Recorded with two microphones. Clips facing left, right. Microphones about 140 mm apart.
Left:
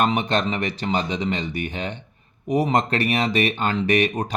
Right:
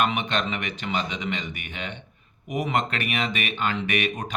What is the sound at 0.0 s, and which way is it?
A man's voice, 35° left (ahead or behind).